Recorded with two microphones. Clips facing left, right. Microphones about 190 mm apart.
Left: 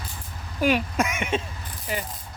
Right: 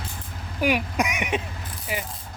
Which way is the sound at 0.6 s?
15° right (ahead or behind).